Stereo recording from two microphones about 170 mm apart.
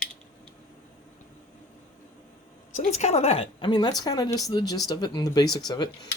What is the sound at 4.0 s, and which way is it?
Speech, 20° left (ahead or behind).